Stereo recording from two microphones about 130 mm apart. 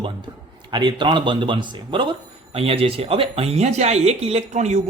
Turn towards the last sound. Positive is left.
turn(degrees=-65)  # may be behind; listen again after turning